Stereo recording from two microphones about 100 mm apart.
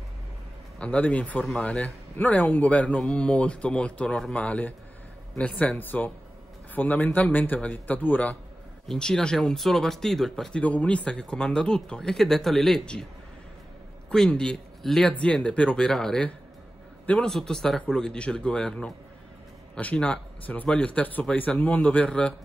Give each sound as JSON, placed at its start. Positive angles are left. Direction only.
{"t": 0.7, "sound": "speech", "side_deg": 15}
{"t": 8.8, "sound": "speech", "side_deg": 5}
{"t": 14.1, "sound": "speech", "side_deg": 10}